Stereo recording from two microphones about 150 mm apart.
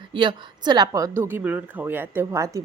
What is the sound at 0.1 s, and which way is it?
Speech, 30° right (ahead or behind).